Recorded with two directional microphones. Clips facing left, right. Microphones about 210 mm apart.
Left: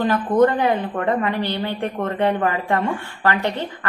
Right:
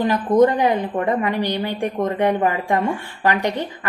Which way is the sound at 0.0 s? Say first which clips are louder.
Right 1 dB; 15° right (ahead or behind).